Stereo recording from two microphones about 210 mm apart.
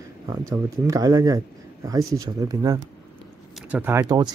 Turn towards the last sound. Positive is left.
turn(degrees=-20)  # may be behind; listen again after turning